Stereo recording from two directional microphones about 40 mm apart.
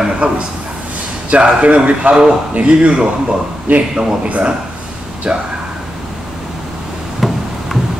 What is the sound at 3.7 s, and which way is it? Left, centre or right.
Speech, right.